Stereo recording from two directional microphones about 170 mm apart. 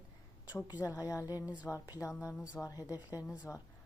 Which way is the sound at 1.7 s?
20° left (ahead or behind).